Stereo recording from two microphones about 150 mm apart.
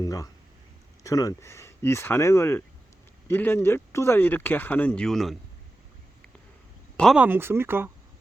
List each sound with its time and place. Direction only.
0.0 s a sound: 20° left (ahead or behind)
1.0 s speech: 25° left (ahead or behind); by 5.4 s centre (ahead or behind)
6.9 s speech: 5° left (ahead or behind)
7.2 s speech: 15° right (ahead or behind)